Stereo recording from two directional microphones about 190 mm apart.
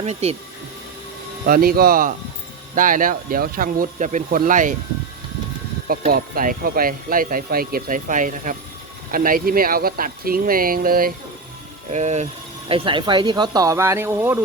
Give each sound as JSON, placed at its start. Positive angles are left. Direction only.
{"t": 0.0, "sound": "speech", "side_deg": -35}
{"t": 1.5, "sound": "speech", "side_deg": -50}
{"t": 6.1, "sound": "speech", "side_deg": -50}
{"t": 11.9, "sound": "speech", "side_deg": -35}